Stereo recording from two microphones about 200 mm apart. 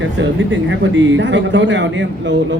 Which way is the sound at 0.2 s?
65° right (ahead or behind).